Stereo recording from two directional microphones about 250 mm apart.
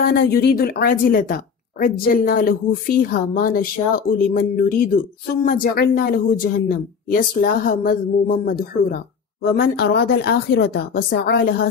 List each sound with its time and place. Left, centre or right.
0.0 s a woman's voice: left